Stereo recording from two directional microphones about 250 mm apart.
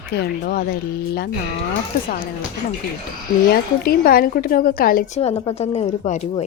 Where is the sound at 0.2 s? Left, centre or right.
Left.